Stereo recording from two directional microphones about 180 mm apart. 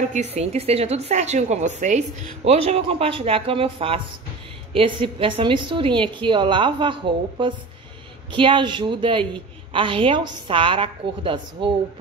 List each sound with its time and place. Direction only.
0.4 s a woman's voice: 35° right (ahead or behind)